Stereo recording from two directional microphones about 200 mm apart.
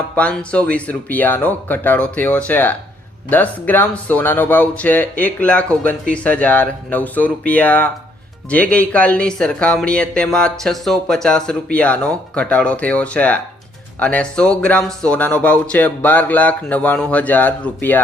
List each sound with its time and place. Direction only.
0.2 s speech: 5° left (ahead or behind)